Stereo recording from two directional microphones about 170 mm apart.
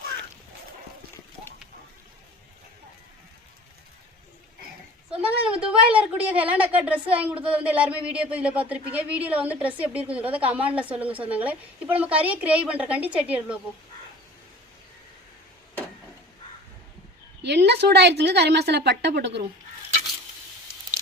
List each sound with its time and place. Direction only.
5.2 s a woman's voice: 5° right (ahead or behind)
17.4 s a woman's voice: 80° right